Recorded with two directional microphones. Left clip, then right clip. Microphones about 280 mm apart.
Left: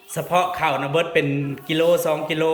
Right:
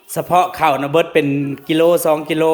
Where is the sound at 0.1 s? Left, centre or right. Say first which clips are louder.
Right 6 dB; centre.